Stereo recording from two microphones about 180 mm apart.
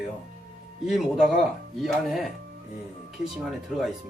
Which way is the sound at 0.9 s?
Centre (ahead or behind).